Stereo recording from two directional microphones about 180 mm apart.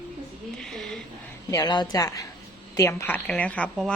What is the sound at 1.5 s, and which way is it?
A woman's voice, 20° left (ahead or behind).